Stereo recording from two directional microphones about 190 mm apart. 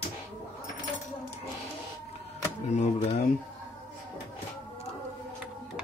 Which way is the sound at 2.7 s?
35° left (ahead or behind).